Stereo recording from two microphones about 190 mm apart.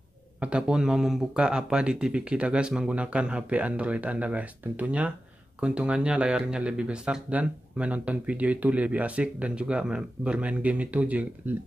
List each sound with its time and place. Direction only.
0.4 s speech: 5° right (ahead or behind)